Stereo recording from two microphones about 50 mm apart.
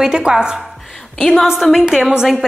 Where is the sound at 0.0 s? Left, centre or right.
Centre.